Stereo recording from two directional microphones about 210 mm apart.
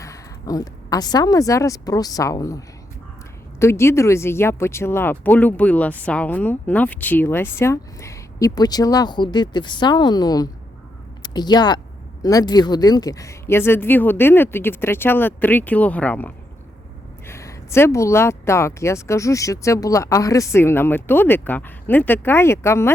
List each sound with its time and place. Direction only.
0.0 s a woman's voice: 15° left (ahead or behind)
11.2 s a sound: 20° left (ahead or behind)
12.2 s speech: 20° left (ahead or behind)